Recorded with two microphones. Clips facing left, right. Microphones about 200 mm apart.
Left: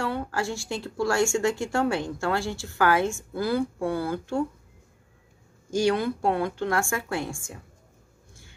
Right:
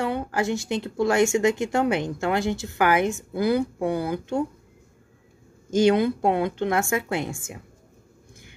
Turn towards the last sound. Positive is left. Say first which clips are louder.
# right 3 dB
turn(degrees=-20)  # may be behind; listen again after turning